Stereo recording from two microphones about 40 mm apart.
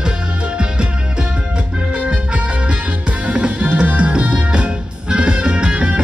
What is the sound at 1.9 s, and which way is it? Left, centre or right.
Music, right.